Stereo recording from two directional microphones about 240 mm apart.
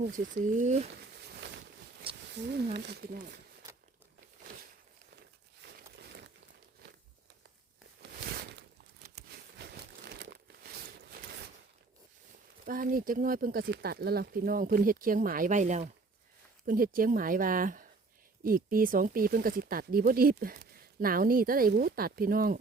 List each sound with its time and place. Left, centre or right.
0.4 s speech: right
1.2 s a sound: right
2.7 s speech: right
5.6 s crumpling: right
9.6 s crumpling: right
11.2 s a sound: right
12.6 s speech: right